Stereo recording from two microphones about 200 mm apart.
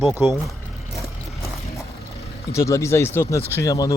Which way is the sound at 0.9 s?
Centre (ahead or behind).